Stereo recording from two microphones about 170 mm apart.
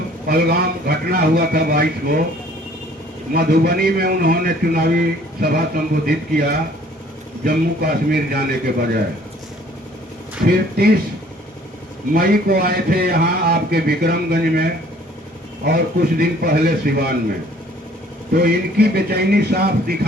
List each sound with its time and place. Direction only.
0.3 s a man's voice: 60° right (ahead or behind)
3.3 s a man's voice: 60° right (ahead or behind)
10.4 s a man's voice: 65° right (ahead or behind)
12.1 s a man's voice: 60° right (ahead or behind)
18.3 s a man's voice: 65° right (ahead or behind)